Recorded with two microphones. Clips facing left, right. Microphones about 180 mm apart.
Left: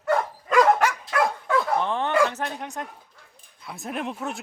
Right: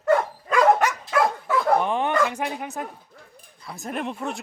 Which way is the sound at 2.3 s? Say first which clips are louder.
Right 2 dB; 10° right (ahead or behind).